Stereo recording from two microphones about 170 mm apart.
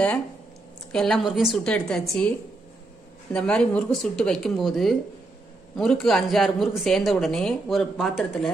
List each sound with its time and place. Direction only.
0.9 s speech: centre (ahead or behind)
3.3 s speech: 5° left (ahead or behind)